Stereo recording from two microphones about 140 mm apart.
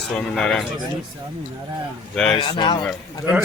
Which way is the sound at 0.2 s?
5° left (ahead or behind).